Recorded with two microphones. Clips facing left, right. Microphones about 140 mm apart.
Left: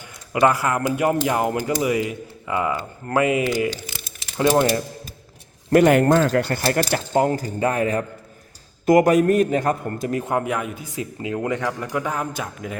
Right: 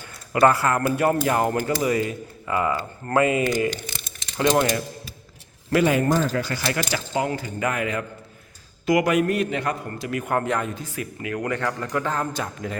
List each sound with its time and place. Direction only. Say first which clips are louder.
0.3 s speech: even; 15° left (ahead or behind)
5.7 s speech: left 5 dB; 65° left (ahead or behind)
6.6 s a man's voice: left 5 dB; 45° left (ahead or behind)
10.3 s speech: even; 10° left (ahead or behind)
10.9 s speech: left 5 dB; 25° left (ahead or behind); by 12.7 s 5° left (ahead or behind)